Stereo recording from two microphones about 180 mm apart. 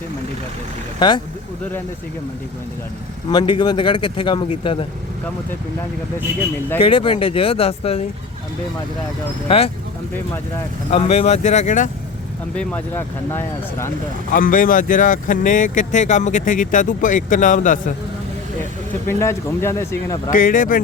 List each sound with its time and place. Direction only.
0.9 s speech: 25° left (ahead or behind)
3.2 s speech: 25° left (ahead or behind)
6.7 s speech: 30° left (ahead or behind)
9.5 s speech: 35° left (ahead or behind)
10.9 s speech: 35° left (ahead or behind)
12.5 s speech: 10° left (ahead or behind)
14.3 s speech: 50° left (ahead or behind)
19.0 s speech: 15° left (ahead or behind)
20.3 s speech: 50° left (ahead or behind)